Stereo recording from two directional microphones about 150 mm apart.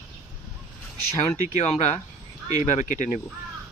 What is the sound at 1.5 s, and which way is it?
Speech, 50° left (ahead or behind).